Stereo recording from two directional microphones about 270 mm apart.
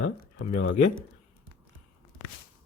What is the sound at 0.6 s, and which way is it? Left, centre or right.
Speech, left.